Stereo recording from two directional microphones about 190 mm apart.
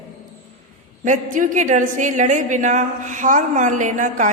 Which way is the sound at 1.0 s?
40° right (ahead or behind).